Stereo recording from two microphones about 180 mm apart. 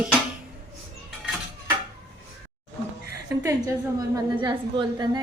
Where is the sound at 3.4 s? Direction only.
15° right (ahead or behind).